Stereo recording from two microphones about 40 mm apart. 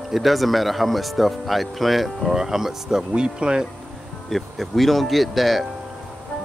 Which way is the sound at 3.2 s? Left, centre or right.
Right.